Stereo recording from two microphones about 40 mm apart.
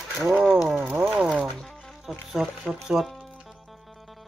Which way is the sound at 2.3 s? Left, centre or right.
Centre.